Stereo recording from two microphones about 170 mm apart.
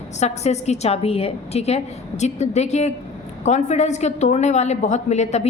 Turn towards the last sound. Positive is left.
turn(degrees=40)  # may be behind; listen again after turning